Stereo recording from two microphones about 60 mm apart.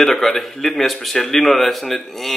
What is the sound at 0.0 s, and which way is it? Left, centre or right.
Speech, centre.